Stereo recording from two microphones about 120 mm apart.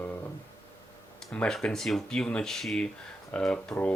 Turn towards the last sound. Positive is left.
turn(degrees=10)  # may be behind; listen again after turning